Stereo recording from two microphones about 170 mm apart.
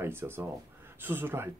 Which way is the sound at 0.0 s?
15° right (ahead or behind).